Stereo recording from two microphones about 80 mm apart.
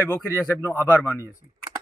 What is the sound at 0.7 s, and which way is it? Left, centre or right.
Speech, left.